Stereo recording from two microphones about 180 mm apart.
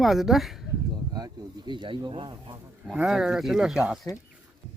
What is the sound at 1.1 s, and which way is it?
Speech, 20° right (ahead or behind).